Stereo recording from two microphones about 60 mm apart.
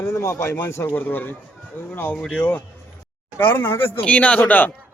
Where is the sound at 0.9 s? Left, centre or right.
Left.